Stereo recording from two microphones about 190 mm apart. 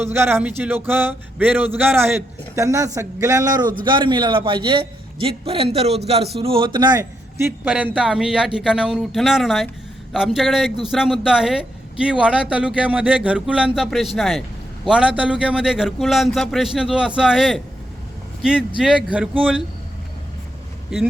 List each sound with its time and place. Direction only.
0.0 s a man's voice: 10° right (ahead or behind)
18.8 s a man's voice: 5° right (ahead or behind)